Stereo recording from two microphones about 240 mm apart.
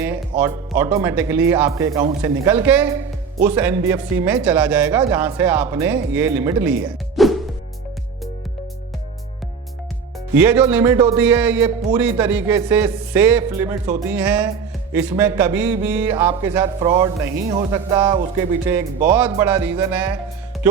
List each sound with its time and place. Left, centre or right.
0.0 s music: centre
0.8 s speech: centre
10.3 s speech: centre